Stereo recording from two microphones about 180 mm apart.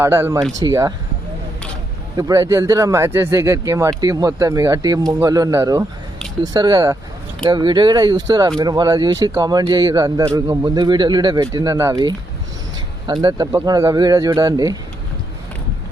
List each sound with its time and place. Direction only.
0.0 s speech: 15° right (ahead or behind)
2.1 s speech: 20° right (ahead or behind)
13.2 s speech: 20° right (ahead or behind)